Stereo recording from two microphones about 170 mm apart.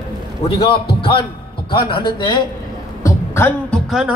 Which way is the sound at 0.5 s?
30° left (ahead or behind).